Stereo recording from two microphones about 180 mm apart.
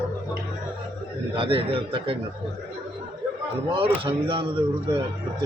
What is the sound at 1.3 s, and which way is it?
Speech, 30° right (ahead or behind).